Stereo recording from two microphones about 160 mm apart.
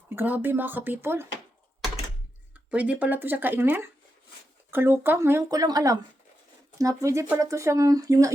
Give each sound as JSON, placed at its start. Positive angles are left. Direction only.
{"t": 0.1, "sound": "speech", "side_deg": -10}
{"t": 2.6, "sound": "speech", "side_deg": -10}